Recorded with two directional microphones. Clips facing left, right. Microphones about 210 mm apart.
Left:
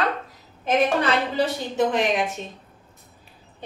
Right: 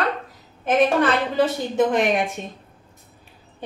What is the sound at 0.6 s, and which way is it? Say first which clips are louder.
A woman's voice: right 3 dB; 50° right (ahead or behind).